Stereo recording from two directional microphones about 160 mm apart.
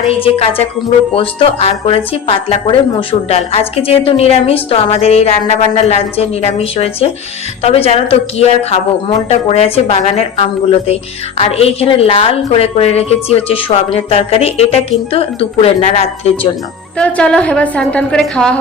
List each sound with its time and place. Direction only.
0.1 s speech: 40° left (ahead or behind)
17.0 s a woman's voice: 5° left (ahead or behind)